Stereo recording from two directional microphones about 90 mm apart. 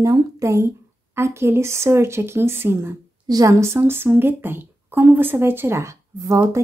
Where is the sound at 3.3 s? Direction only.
40° right (ahead or behind).